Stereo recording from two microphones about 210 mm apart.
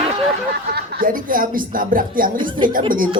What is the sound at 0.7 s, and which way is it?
A woman's voice, 50° right (ahead or behind).